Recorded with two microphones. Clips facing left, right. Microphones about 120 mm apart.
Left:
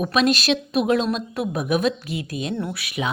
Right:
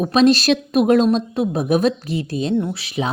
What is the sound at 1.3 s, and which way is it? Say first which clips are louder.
Speech: right 5 dB; 25° right (ahead or behind).